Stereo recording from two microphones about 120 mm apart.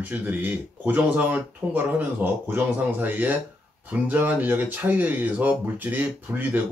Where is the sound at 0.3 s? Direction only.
15° right (ahead or behind).